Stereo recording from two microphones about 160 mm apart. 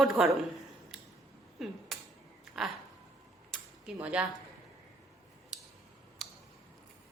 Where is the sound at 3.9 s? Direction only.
10° right (ahead or behind).